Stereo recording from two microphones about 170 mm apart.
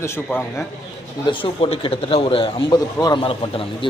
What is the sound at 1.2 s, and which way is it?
A man's voice, 30° left (ahead or behind).